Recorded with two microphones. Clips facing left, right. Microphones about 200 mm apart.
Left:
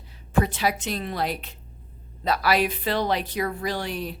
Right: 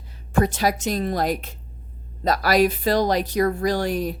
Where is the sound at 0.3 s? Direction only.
45° right (ahead or behind).